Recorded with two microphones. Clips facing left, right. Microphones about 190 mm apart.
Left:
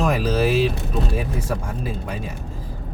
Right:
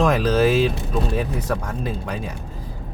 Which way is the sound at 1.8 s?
5° left (ahead or behind).